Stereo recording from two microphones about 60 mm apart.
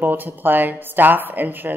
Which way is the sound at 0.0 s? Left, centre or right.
Right.